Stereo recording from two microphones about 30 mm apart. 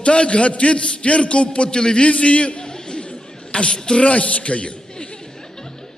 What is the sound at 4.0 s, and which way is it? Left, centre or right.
Chuckle, left.